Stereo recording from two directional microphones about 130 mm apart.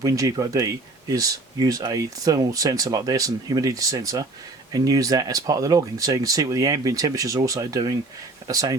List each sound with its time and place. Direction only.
0.0 s speech: 25° right (ahead or behind)